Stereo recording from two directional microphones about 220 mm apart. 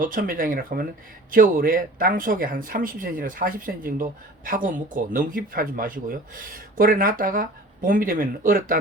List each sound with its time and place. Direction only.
0.0 s speech: 40° right (ahead or behind)